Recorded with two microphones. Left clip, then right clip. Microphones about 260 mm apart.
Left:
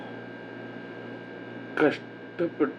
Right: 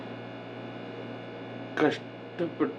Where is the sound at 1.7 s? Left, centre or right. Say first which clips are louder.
Left 2 dB; centre.